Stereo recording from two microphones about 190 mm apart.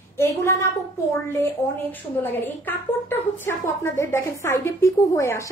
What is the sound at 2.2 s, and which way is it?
A woman's voice, 10° left (ahead or behind).